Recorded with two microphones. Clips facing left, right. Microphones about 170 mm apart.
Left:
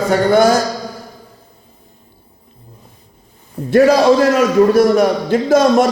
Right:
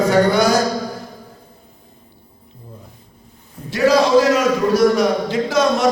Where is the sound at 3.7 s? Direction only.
55° left (ahead or behind).